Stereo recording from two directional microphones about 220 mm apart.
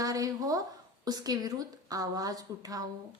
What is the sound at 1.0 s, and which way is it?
A woman's voice, 15° right (ahead or behind).